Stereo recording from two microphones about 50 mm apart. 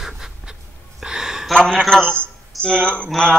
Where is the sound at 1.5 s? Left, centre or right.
Centre.